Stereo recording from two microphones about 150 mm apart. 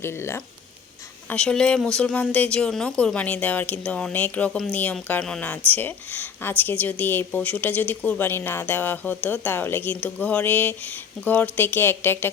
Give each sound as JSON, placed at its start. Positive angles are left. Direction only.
{"t": 0.0, "sound": "speech", "side_deg": 15}
{"t": 1.3, "sound": "speech", "side_deg": 5}